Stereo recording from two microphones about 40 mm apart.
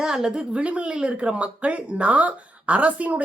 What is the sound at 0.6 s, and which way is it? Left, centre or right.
Speech, right.